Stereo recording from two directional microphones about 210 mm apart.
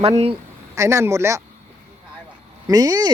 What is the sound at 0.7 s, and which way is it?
Speech, 15° right (ahead or behind).